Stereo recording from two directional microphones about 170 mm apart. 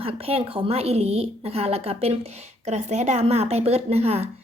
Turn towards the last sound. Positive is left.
turn(degrees=-35)  # may be behind; listen again after turning